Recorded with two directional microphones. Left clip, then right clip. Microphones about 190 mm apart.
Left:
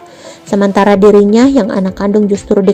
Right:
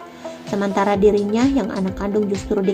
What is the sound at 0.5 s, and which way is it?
A woman's voice, 45° left (ahead or behind).